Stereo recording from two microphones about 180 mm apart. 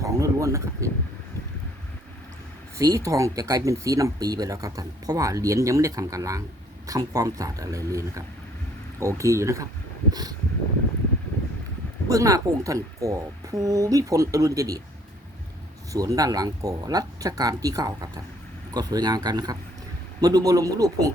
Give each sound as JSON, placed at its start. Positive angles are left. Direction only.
{"t": 0.0, "sound": "a sound", "side_deg": -20}
{"t": 2.7, "sound": "speech", "side_deg": -15}
{"t": 12.0, "sound": "speech", "side_deg": -20}
{"t": 15.9, "sound": "speech", "side_deg": -20}